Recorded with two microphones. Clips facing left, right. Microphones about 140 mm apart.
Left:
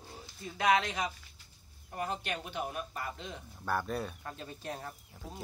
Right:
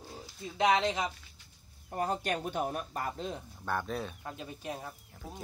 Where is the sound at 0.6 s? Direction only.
25° right (ahead or behind).